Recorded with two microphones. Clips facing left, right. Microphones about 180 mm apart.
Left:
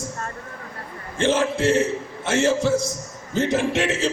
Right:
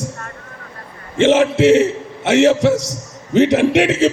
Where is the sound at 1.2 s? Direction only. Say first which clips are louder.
Right 8 dB; 70° right (ahead or behind).